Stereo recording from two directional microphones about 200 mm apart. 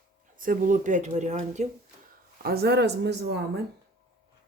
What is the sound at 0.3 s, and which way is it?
Speech, 40° right (ahead or behind).